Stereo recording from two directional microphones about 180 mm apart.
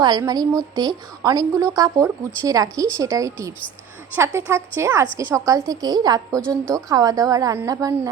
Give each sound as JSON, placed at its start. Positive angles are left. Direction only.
{"t": 0.0, "sound": "a woman's voice", "side_deg": -20}